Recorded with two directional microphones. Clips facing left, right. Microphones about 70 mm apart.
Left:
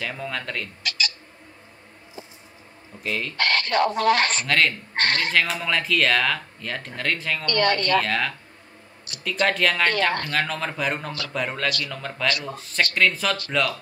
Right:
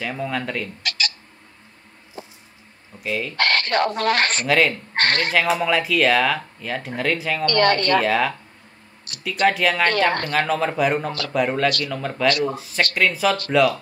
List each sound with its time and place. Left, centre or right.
0.0 s speech: centre
0.8 s bird: right
3.0 s speech: centre
3.3 s speech: right
4.5 s speech: centre
4.9 s speech: right
5.3 s speech: centre
7.4 s speech: right
8.0 s speech: centre